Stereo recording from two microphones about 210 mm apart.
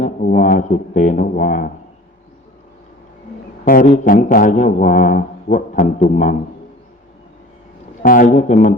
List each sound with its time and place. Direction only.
0.0 s a man's voice: 40° left (ahead or behind)
3.6 s a man's voice: 40° left (ahead or behind)
8.0 s a man's voice: 40° left (ahead or behind)